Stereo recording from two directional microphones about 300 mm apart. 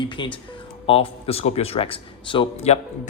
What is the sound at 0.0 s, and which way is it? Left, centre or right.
A man's voice, centre.